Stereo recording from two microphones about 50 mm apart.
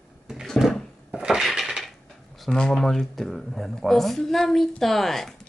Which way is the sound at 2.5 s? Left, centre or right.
Centre.